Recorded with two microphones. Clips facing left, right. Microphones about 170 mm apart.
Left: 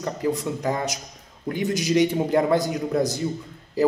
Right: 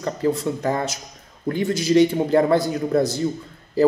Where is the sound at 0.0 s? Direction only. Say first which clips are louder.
Right 3 dB; 15° left (ahead or behind).